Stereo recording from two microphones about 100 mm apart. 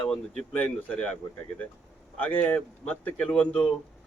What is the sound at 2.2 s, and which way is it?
A man's voice, 20° left (ahead or behind).